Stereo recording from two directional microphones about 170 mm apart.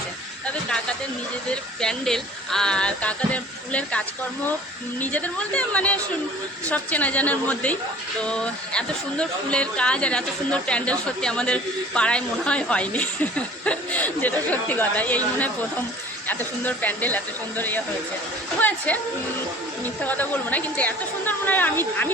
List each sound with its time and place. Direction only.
1.5 s speech: 5° left (ahead or behind)
16.2 s speech: 10° left (ahead or behind)
19.8 s speech: 10° left (ahead or behind)